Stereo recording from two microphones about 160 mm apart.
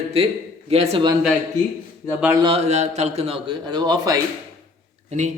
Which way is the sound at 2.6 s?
45° right (ahead or behind).